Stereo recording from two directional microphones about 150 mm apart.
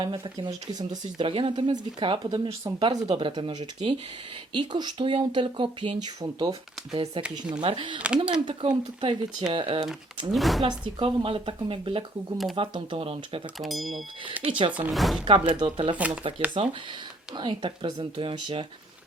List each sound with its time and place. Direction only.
0.0 s speech: 30° right (ahead or behind)
8.0 s speech: 5° right (ahead or behind)
8.3 s speech: 30° right (ahead or behind)
10.3 s speech: centre (ahead or behind)
10.6 s speech: 30° right (ahead or behind)
13.6 s speech: centre (ahead or behind)
14.4 s speech: 10° right (ahead or behind)
15.2 s speech: 35° right (ahead or behind)
16.0 s speech: 10° right (ahead or behind)
16.6 s speech: 40° right (ahead or behind)